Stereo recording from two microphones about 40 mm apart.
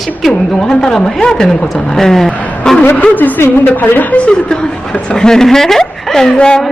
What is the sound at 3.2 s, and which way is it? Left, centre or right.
Speech, left.